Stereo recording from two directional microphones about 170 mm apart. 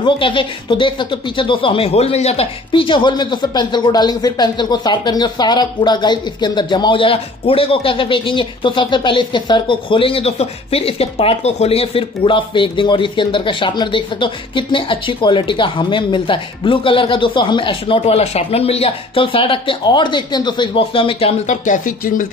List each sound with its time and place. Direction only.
0.0 s speech: 30° left (ahead or behind); by 22.3 s 55° left (ahead or behind)